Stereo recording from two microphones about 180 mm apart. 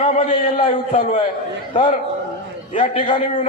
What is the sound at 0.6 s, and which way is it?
Speech, 50° left (ahead or behind).